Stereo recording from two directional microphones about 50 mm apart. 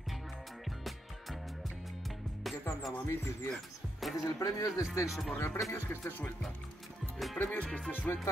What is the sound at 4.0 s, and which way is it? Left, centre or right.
Speech, centre.